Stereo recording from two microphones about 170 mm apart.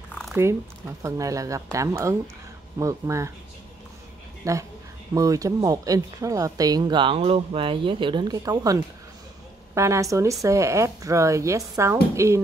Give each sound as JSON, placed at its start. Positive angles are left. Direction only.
{"t": 1.0, "sound": "speech", "side_deg": -20}
{"t": 4.4, "sound": "speech", "side_deg": -20}